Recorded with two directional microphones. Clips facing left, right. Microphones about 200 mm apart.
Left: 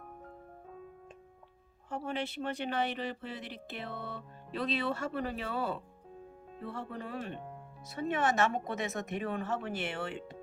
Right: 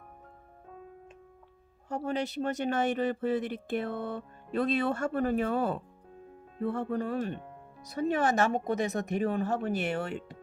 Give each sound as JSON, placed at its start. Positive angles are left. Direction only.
{"t": 1.9, "sound": "speech", "side_deg": -40}